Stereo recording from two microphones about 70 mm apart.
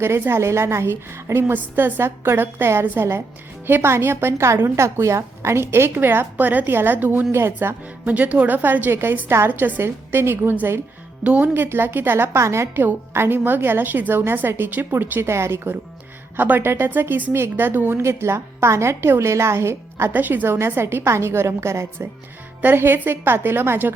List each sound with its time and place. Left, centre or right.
0.0 s a woman's voice: right
7.3 s a woman's voice: right
8.0 s a woman's voice: right
11.2 s a woman's voice: centre; by 12.8 s right
12.8 s a woman's voice: right
20.1 s a woman's voice: right